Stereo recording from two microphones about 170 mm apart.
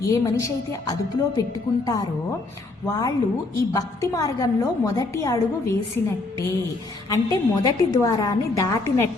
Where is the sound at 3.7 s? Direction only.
20° left (ahead or behind).